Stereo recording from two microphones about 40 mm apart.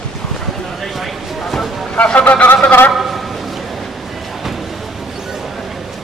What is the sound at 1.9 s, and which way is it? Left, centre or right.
Speech, left.